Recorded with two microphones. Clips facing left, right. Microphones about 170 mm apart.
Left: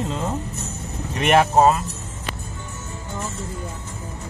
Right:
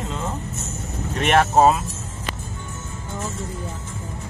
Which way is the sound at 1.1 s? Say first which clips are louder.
Left 1 dB; 10° left (ahead or behind).